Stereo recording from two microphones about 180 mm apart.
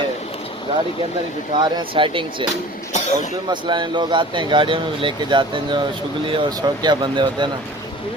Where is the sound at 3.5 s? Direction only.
25° right (ahead or behind).